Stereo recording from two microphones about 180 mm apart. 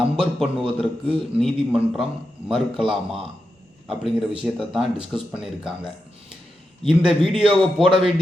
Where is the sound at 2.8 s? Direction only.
30° right (ahead or behind).